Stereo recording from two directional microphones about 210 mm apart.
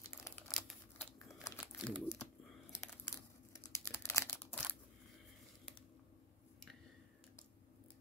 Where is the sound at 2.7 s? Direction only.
15° left (ahead or behind).